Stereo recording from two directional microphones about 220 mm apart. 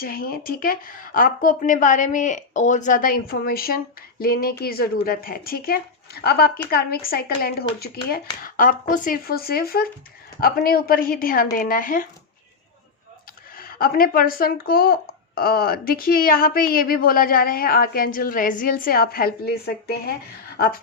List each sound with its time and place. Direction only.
0.0 s speech: 40° left (ahead or behind)
13.6 s speech: 40° left (ahead or behind)